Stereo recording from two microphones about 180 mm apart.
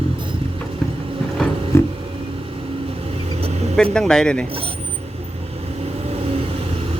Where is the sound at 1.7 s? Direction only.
15° left (ahead or behind).